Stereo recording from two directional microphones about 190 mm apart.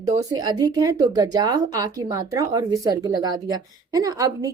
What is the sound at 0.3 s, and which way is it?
Speech, 20° right (ahead or behind).